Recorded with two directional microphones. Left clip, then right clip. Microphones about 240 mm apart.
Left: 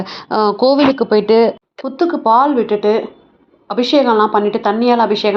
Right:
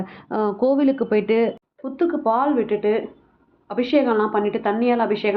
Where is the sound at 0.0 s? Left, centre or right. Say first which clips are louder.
Left 9 dB; centre.